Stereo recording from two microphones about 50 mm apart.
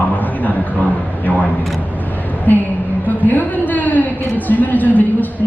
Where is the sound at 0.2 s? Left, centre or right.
Left.